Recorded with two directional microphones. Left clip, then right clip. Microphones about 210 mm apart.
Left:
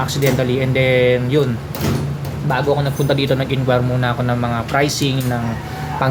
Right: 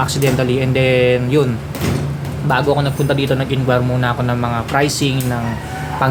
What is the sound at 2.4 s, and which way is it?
Speech, 5° right (ahead or behind).